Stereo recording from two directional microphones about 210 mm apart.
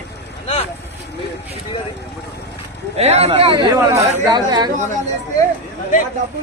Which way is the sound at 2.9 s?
30° right (ahead or behind).